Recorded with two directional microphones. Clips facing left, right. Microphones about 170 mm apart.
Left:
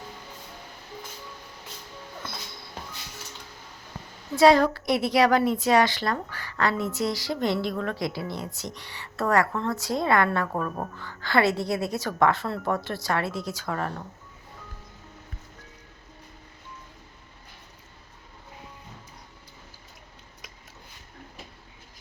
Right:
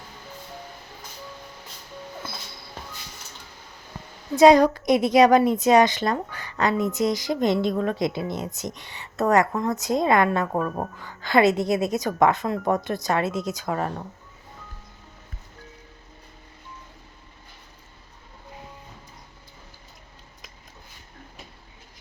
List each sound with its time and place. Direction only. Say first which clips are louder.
4.4 s a woman's voice: right 4 dB; 20° right (ahead or behind)